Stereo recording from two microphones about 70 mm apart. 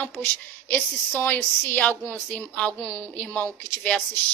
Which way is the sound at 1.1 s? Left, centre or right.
Left.